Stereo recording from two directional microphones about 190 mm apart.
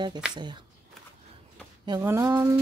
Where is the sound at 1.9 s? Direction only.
15° right (ahead or behind).